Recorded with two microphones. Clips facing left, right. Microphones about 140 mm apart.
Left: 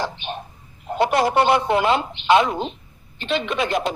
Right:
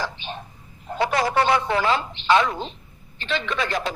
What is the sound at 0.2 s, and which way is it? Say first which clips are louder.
Speech: left 4 dB; 65° left (ahead or behind).